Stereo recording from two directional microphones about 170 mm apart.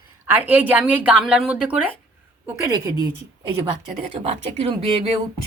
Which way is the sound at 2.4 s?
20° right (ahead or behind).